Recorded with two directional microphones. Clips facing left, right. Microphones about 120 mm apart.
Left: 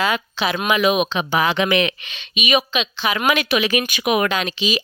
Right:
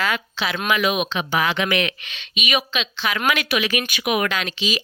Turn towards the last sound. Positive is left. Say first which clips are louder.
# left 3 dB
turn(degrees=20)  # may be behind; listen again after turning